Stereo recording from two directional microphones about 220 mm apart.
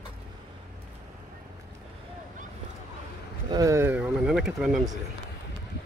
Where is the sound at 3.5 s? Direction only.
15° right (ahead or behind).